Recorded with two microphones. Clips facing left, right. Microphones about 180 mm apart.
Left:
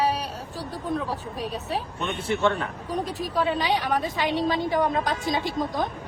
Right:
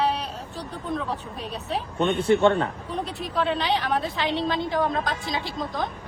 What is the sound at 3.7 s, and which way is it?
A woman's voice, 10° left (ahead or behind).